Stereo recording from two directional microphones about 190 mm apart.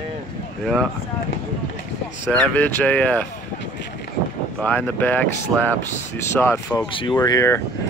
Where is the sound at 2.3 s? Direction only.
5° left (ahead or behind).